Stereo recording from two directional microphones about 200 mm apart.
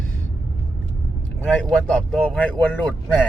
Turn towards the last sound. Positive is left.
turn(degrees=5)  # may be behind; listen again after turning